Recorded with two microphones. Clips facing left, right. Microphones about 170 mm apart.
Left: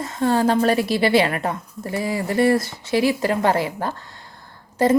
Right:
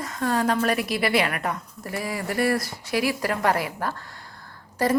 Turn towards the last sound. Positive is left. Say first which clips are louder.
# left 5 dB
turn(degrees=25)  # may be behind; listen again after turning